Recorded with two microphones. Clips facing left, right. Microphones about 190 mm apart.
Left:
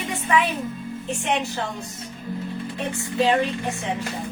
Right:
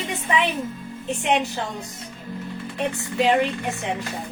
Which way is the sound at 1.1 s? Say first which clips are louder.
Right 3 dB; 20° right (ahead or behind).